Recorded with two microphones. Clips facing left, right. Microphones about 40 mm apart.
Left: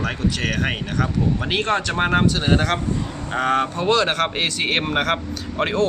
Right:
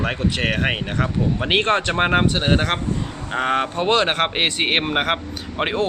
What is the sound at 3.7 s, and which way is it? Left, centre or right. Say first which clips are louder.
Speech: even; right.